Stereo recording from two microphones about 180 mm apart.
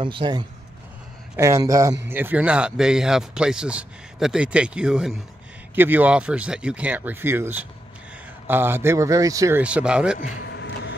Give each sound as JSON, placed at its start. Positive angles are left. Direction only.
{"t": 0.0, "sound": "speech", "side_deg": -25}
{"t": 9.6, "sound": "speech", "side_deg": -5}
{"t": 10.4, "sound": "vehicle", "side_deg": 75}